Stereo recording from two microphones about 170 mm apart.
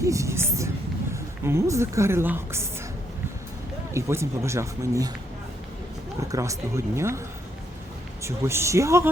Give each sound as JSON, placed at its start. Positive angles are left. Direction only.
{"t": 0.0, "sound": "a woman's voice", "side_deg": -20}
{"t": 3.9, "sound": "speech", "side_deg": -15}
{"t": 6.2, "sound": "speech", "side_deg": -20}
{"t": 8.2, "sound": "speech", "side_deg": -15}